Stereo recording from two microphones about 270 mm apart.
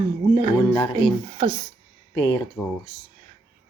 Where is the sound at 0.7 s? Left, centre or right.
Centre.